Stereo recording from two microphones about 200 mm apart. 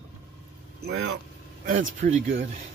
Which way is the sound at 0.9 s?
90° right.